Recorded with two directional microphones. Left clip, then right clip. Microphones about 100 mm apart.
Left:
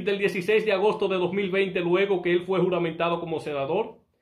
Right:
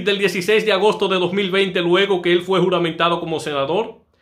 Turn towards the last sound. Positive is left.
turn(degrees=-25)  # may be behind; listen again after turning